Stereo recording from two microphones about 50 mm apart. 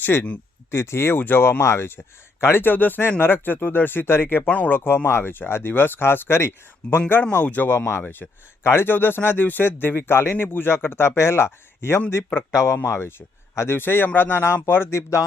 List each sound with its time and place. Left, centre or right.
0.0 s speech: left
0.7 s speech: left
2.4 s speech: left
4.4 s speech: left
4.7 s speech: left
6.8 s speech: centre
7.4 s speech: left
7.7 s speech: left
12.1 s speech: left
12.5 s speech: left